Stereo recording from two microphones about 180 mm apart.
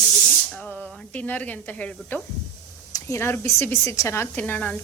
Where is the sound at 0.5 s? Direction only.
10° left (ahead or behind).